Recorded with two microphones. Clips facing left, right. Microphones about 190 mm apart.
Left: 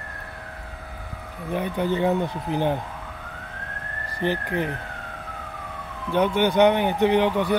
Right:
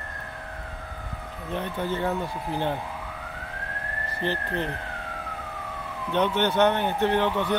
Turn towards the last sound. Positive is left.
turn(degrees=15)  # may be behind; listen again after turning